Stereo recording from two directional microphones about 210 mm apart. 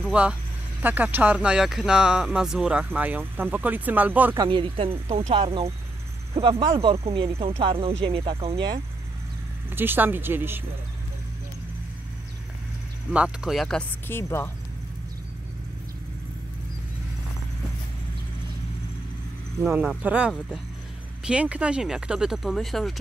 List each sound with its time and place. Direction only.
0.0 s speech: 5° right (ahead or behind)
4.5 s speech: 25° right (ahead or behind)
6.7 s speech: 25° right (ahead or behind)
9.7 s speech: 10° right (ahead or behind)
13.1 s speech: 5° right (ahead or behind)
19.6 s speech: centre (ahead or behind)